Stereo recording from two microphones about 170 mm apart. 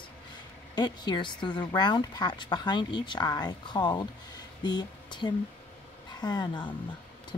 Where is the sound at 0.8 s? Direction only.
25° left (ahead or behind).